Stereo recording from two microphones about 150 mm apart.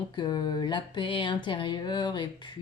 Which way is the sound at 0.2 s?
30° left (ahead or behind).